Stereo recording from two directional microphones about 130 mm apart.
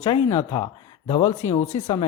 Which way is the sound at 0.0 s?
35° left (ahead or behind).